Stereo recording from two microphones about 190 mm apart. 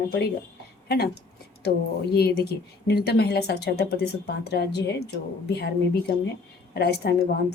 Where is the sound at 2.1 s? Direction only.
55° left (ahead or behind).